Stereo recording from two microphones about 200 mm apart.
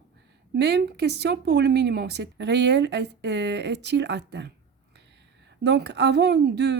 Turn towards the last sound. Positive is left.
turn(degrees=-60)  # may be behind; listen again after turning